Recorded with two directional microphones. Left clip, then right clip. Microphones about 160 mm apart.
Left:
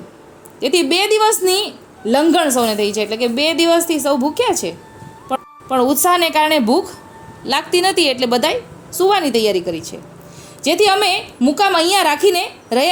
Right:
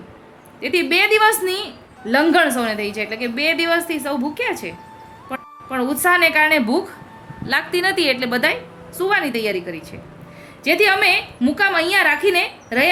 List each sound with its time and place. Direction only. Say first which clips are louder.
0.6 s a woman's voice: left 2 dB; 30° left (ahead or behind)
5.7 s a woman's voice: left 3 dB; 30° left (ahead or behind)